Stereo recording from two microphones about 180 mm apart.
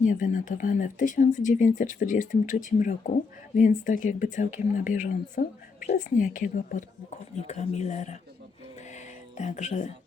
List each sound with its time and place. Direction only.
0.0 s speech: 45° left (ahead or behind)
9.4 s speech: 40° left (ahead or behind)